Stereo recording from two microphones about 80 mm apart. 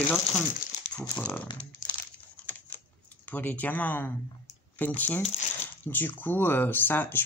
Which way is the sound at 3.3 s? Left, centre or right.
Left.